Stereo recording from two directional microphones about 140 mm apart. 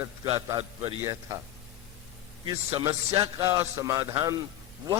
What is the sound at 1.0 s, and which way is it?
Speech, 25° right (ahead or behind).